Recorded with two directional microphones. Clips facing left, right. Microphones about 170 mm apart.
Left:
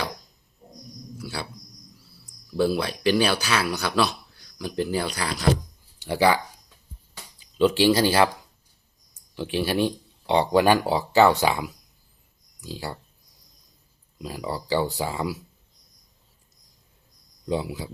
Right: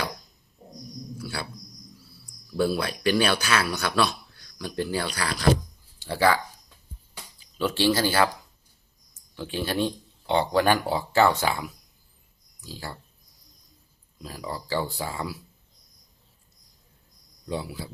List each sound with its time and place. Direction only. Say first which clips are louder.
1.2 s a sound: left 1 dB; 15° left (ahead or behind)
2.6 s speech: left 2 dB; 20° left (ahead or behind)
7.6 s speech: left 4 dB; 15° left (ahead or behind)
9.3 s speech: left 4 dB; 10° left (ahead or behind)
14.2 s speech: left 4 dB; 15° left (ahead or behind)
17.5 s speech: left 5 dB; 15° left (ahead or behind)